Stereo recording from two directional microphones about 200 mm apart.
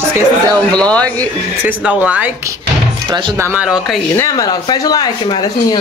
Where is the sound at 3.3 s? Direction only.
10° right (ahead or behind).